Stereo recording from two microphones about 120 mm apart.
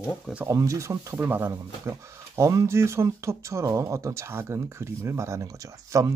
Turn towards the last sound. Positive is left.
turn(degrees=-25)  # may be behind; listen again after turning